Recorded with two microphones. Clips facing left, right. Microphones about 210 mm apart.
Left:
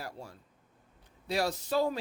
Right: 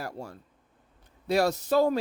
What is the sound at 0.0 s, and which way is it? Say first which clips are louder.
Speech: right 6 dB; 55° right (ahead or behind).